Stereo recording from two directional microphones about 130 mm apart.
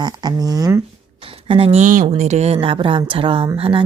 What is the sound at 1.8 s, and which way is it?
Speech, 75° right (ahead or behind).